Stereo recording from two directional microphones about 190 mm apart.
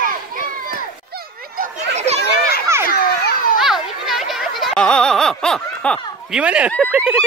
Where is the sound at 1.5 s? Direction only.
45° right (ahead or behind).